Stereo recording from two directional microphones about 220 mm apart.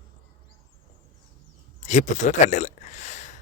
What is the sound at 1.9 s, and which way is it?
Speech, 35° left (ahead or behind).